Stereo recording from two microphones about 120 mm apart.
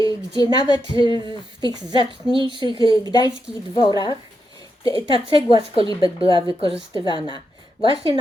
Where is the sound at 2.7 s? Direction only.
40° left (ahead or behind).